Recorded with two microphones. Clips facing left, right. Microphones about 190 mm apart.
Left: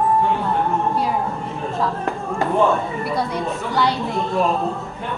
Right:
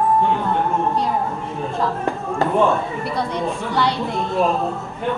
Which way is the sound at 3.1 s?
10° left (ahead or behind).